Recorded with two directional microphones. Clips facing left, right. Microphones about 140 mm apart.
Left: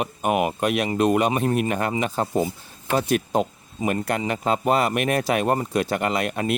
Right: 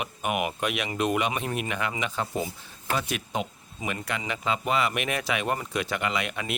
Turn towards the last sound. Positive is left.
turn(degrees=40)  # may be behind; listen again after turning